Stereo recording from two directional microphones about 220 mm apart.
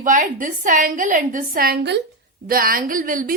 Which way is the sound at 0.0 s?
35° right (ahead or behind).